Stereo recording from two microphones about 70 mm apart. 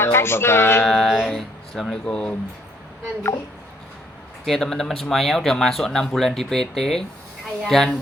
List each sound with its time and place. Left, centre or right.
0.0 s speech: left
0.9 s speech: centre
4.4 s speech: centre